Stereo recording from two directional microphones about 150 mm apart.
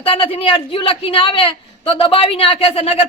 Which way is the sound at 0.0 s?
40° left (ahead or behind).